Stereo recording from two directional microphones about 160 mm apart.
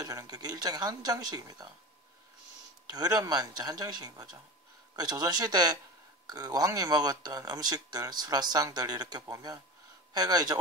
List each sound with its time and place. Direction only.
0.0 s speech: 20° right (ahead or behind)
2.9 s speech: 25° right (ahead or behind)